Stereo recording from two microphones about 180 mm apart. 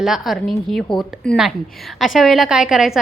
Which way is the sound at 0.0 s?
Centre (ahead or behind).